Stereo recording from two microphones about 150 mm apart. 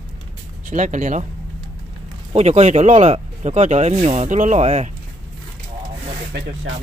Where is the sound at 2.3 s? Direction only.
45° right (ahead or behind).